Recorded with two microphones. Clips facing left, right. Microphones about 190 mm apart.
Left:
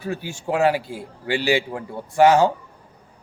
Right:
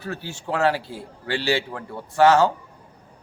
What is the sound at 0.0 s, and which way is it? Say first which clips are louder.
Speech: left 4 dB; 10° left (ahead or behind).